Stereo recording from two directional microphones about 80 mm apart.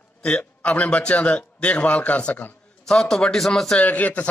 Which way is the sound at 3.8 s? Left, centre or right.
Centre.